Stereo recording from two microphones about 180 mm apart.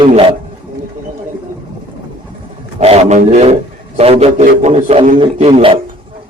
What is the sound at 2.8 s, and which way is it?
A man's voice, 35° right (ahead or behind).